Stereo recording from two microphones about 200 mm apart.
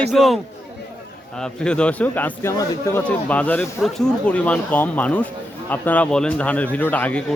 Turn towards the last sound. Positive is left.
turn(degrees=10)  # may be behind; listen again after turning